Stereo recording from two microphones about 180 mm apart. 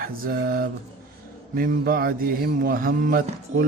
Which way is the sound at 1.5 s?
55° right (ahead or behind).